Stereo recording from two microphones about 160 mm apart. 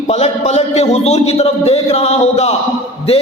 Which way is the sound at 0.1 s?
40° left (ahead or behind).